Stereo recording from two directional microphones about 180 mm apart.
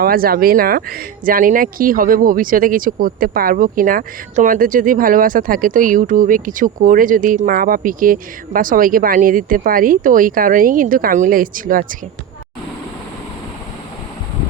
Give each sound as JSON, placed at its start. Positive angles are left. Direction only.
{"t": 0.0, "sound": "speech", "side_deg": -55}